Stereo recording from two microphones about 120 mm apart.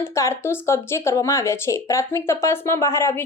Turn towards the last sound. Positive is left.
turn(degrees=20)  # may be behind; listen again after turning